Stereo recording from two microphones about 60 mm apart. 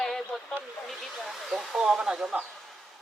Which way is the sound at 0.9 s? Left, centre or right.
Centre.